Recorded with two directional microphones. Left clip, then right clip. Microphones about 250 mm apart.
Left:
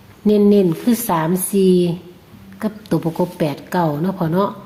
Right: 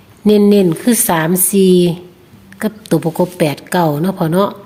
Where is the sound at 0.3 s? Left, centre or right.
Right.